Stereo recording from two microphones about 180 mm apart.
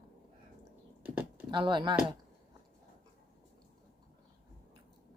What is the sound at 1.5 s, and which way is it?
Speech, 25° right (ahead or behind).